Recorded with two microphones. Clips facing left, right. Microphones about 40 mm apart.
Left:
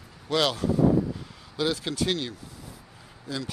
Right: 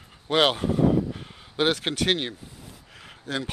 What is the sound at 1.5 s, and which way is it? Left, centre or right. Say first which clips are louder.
Speech: right 3 dB; right.